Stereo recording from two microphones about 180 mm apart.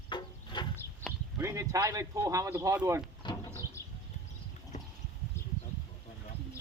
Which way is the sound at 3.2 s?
20° left (ahead or behind).